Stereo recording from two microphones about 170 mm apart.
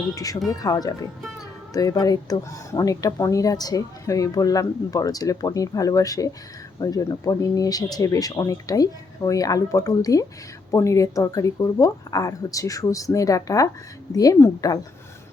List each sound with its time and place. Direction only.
0.1 s speech: 20° left (ahead or behind)
0.3 s speech: centre (ahead or behind)
0.6 s speech: 20° left (ahead or behind)